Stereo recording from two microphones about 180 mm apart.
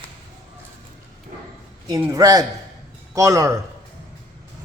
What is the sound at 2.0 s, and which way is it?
A man's voice, 20° right (ahead or behind).